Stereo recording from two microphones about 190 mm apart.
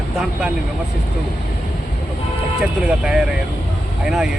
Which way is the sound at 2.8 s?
5° right (ahead or behind).